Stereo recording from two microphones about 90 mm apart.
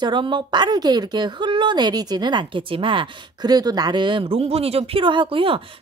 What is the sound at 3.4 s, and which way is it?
Speech, 45° right (ahead or behind).